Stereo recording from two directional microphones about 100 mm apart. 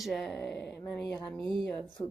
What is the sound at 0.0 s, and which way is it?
Speech, centre (ahead or behind).